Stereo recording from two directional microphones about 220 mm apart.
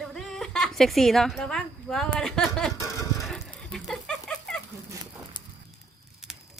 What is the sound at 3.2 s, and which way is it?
Music, centre (ahead or behind).